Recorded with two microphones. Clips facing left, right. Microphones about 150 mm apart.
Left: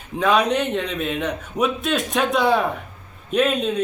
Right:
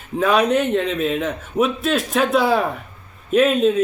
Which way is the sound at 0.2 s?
5° right (ahead or behind).